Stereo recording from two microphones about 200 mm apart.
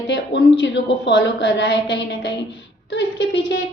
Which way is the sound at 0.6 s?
60° left (ahead or behind).